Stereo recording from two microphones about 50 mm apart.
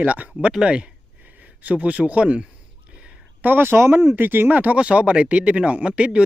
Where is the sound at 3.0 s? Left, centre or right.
Right.